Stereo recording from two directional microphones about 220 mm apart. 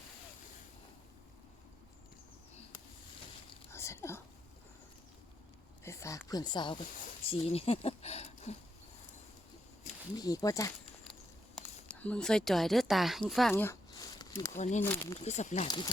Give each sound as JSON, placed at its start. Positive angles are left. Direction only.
{"t": 3.7, "sound": "a sound", "side_deg": 10}
{"t": 5.8, "sound": "a sound", "side_deg": 15}
{"t": 7.3, "sound": "speech", "side_deg": 25}
{"t": 10.2, "sound": "speech", "side_deg": 15}
{"t": 13.5, "sound": "a sound", "side_deg": 10}
{"t": 14.5, "sound": "speech", "side_deg": 35}
{"t": 14.8, "sound": "speech", "side_deg": 10}
{"t": 15.2, "sound": "speech", "side_deg": 30}
{"t": 15.6, "sound": "speech", "side_deg": 20}